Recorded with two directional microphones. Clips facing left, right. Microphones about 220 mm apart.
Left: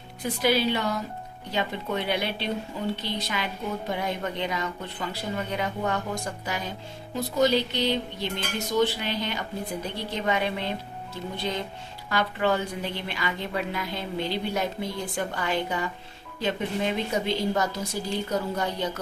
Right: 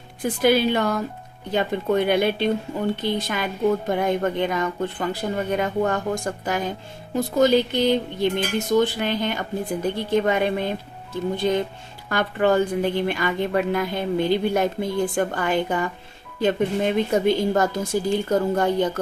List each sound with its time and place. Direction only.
0.4 s a woman's voice: 50° right (ahead or behind)